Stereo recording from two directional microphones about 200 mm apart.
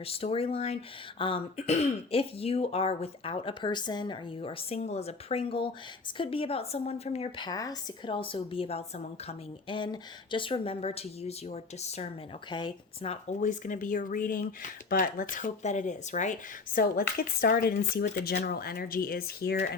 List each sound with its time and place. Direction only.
0.0 s speech: 30° left (ahead or behind); by 19.7 s 50° left (ahead or behind)